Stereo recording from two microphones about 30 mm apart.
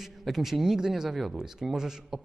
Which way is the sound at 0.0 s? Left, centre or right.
Centre.